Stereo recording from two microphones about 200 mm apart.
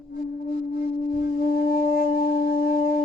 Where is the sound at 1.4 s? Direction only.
45° left (ahead or behind).